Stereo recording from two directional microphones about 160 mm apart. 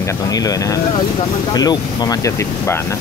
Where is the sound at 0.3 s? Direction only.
20° left (ahead or behind).